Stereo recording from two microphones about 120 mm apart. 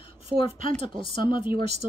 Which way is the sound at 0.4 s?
45° left (ahead or behind).